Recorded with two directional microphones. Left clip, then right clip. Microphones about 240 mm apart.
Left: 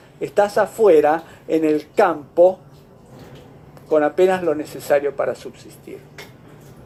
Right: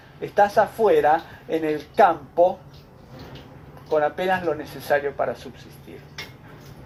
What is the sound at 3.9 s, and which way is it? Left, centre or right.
Speech, left.